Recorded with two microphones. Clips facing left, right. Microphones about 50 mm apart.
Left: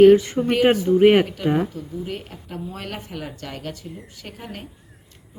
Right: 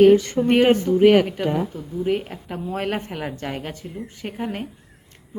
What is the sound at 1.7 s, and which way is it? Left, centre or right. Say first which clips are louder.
A woman's voice: right 7 dB; right.